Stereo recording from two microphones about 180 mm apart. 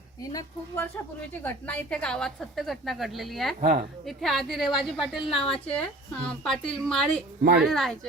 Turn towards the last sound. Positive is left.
turn(degrees=0)  # may be behind; listen again after turning